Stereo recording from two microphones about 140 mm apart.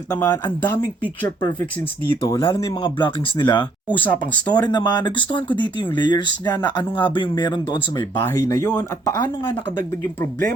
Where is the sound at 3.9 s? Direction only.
10° left (ahead or behind).